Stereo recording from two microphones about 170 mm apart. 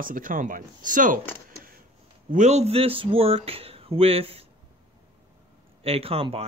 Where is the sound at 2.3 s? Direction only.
40° right (ahead or behind).